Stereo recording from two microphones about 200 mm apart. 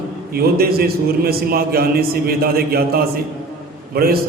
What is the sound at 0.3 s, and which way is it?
A man's voice, 50° right (ahead or behind).